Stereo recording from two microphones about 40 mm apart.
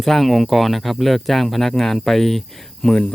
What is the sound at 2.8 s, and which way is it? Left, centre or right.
Speech, left.